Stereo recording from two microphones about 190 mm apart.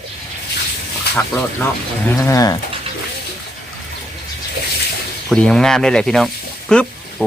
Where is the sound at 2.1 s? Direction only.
15° left (ahead or behind).